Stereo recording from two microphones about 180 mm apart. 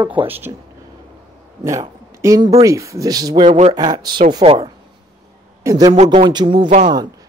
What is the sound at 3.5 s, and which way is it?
Speech, 40° right (ahead or behind).